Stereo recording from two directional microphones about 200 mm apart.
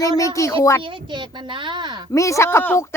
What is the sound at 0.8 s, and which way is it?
Speech, 25° right (ahead or behind).